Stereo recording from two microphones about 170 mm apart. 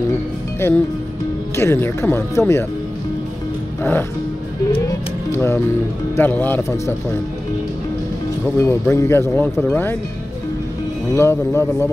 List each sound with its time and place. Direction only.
0.6 s speech: 15° left (ahead or behind)
4.7 s music: 15° left (ahead or behind)
6.1 s speech: 10° left (ahead or behind)
8.5 s speech: 15° left (ahead or behind)
11.1 s speech: 15° left (ahead or behind)